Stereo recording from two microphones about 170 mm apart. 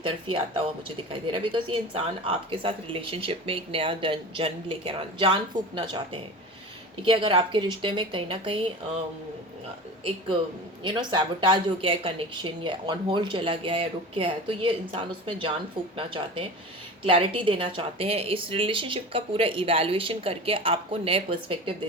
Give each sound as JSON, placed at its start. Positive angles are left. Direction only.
{"t": 0.0, "sound": "speech", "side_deg": -30}
{"t": 10.8, "sound": "speech", "side_deg": -30}